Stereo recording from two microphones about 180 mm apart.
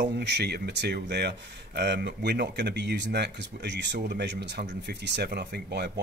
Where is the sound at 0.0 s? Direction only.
70° right (ahead or behind).